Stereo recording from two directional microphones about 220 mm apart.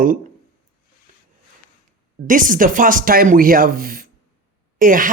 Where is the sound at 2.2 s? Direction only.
35° right (ahead or behind).